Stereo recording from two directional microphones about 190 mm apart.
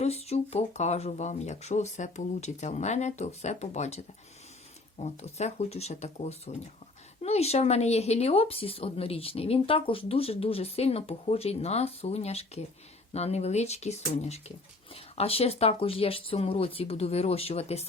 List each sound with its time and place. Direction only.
0.0 s speech: 35° left (ahead or behind)